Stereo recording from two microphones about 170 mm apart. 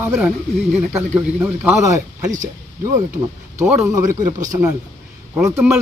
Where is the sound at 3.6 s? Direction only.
10° right (ahead or behind).